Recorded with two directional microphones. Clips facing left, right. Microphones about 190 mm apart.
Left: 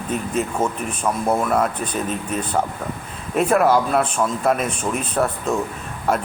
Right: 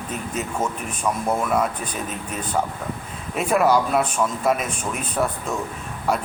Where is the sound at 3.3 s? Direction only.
Centre (ahead or behind).